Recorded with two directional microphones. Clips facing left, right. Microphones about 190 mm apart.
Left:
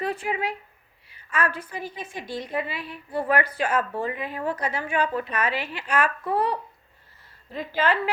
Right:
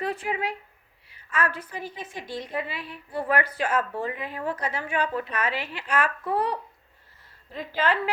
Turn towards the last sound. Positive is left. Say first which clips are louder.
# left 2 dB
turn(degrees=5)  # may be behind; listen again after turning